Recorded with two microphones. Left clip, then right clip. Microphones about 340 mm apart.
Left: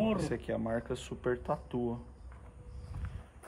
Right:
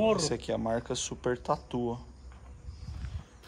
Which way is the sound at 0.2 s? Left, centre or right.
Centre.